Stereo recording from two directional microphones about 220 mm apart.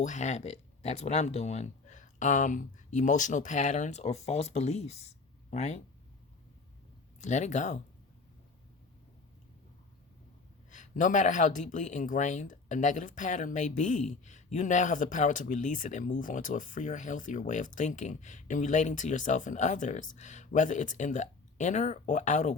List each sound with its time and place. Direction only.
0.0 s speech: 35° left (ahead or behind)
7.2 s speech: 30° left (ahead or behind)
10.7 s speech: 35° left (ahead or behind)